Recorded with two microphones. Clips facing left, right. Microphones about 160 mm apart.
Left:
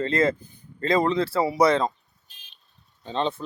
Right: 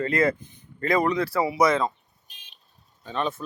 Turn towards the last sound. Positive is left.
turn(degrees=25)  # may be behind; listen again after turning